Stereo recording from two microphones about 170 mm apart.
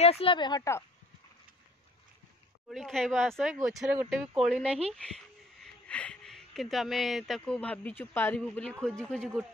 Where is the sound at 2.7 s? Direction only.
Centre (ahead or behind).